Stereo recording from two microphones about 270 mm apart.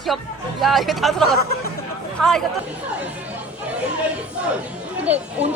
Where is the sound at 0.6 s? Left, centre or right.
Centre.